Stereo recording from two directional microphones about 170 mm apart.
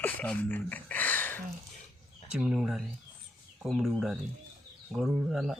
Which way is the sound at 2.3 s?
5° right (ahead or behind).